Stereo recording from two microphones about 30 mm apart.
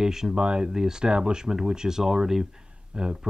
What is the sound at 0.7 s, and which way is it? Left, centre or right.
Speech, centre.